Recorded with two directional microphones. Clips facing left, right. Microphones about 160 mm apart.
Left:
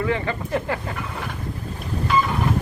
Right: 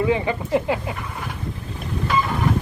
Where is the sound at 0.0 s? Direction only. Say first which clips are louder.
Right 3 dB; 15° right (ahead or behind).